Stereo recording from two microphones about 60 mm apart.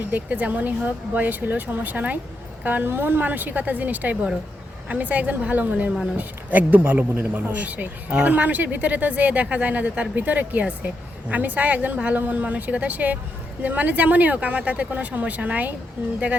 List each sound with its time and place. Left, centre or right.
0.1 s speech: right